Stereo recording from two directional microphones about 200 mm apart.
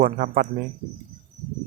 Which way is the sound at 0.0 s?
40° right (ahead or behind).